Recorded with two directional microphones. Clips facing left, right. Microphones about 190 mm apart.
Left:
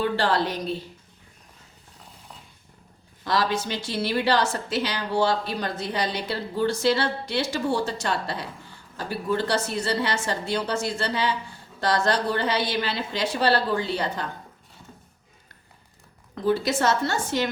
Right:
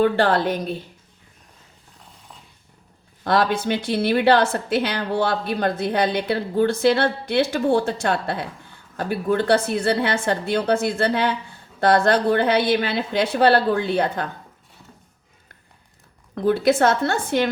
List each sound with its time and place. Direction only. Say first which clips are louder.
0.0 s a woman's voice: right 5 dB; 55° right (ahead or behind)
3.2 s a woman's voice: right 5 dB; 55° right (ahead or behind)
16.5 s a woman's voice: right 5 dB; 55° right (ahead or behind)